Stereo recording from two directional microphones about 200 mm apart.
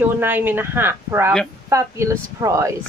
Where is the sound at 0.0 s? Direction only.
10° right (ahead or behind).